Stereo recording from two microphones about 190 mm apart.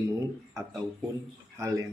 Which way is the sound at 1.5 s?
15° right (ahead or behind).